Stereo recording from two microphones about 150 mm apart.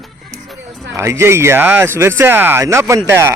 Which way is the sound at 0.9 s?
20° right (ahead or behind).